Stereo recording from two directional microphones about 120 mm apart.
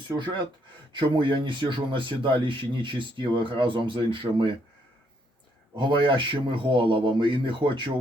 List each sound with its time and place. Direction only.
0.2 s speech: 40° right (ahead or behind)
5.7 s speech: 40° right (ahead or behind)